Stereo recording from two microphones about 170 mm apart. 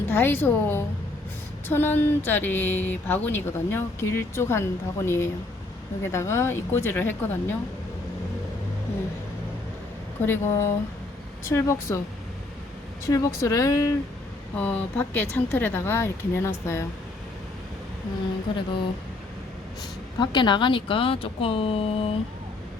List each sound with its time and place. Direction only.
0.1 s speech: 15° left (ahead or behind)
10.2 s speech: 15° left (ahead or behind)
13.1 s speech: 20° left (ahead or behind)
18.5 s speech: 30° left (ahead or behind)
20.1 s speech: 25° left (ahead or behind)